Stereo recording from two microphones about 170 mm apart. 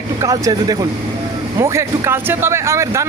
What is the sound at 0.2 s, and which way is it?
A man's voice, 20° right (ahead or behind).